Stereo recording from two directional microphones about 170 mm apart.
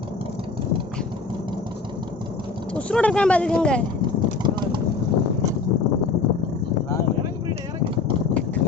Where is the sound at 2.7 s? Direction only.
5° left (ahead or behind).